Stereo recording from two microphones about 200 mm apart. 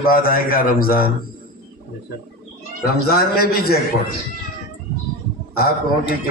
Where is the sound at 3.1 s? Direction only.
50° left (ahead or behind).